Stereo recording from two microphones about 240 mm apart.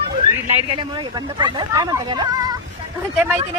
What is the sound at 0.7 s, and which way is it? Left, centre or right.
Speech, centre.